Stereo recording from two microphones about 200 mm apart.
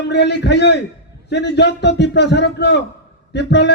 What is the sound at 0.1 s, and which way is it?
A man's voice, 60° left (ahead or behind).